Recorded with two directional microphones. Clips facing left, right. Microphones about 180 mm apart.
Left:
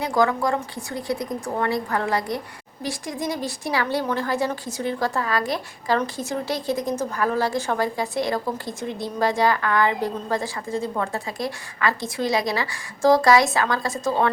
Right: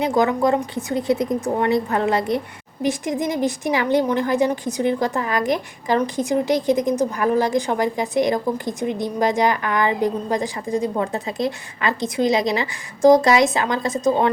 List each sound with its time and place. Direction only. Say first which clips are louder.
0.0 s a woman's voice: right 3 dB; 20° right (ahead or behind)